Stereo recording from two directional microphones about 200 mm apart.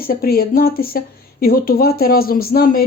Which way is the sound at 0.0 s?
50° left (ahead or behind).